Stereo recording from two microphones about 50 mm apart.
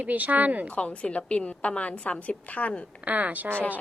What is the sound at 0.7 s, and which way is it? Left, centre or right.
A woman's voice, left.